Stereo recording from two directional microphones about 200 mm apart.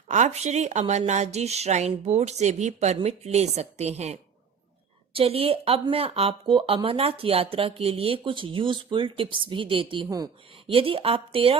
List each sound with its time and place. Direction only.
0.1 s a woman's voice: 35° right (ahead or behind)